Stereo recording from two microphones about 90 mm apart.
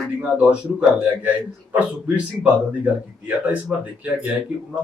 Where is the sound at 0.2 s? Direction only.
10° right (ahead or behind).